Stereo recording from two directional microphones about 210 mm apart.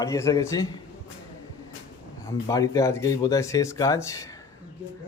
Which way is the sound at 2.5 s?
15° left (ahead or behind).